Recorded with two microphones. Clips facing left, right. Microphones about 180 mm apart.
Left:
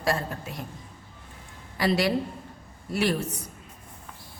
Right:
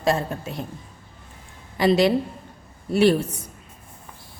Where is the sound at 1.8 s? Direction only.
25° right (ahead or behind).